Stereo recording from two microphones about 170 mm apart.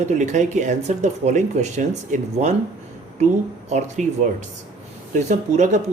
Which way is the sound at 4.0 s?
45° right (ahead or behind).